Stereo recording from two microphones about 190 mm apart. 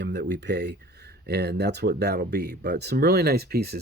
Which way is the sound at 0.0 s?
65° right (ahead or behind).